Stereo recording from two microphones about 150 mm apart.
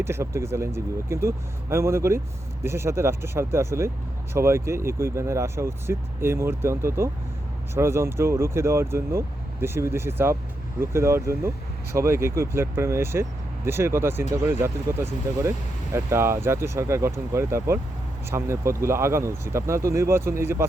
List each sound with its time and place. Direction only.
0.0 s speech: 15° right (ahead or behind)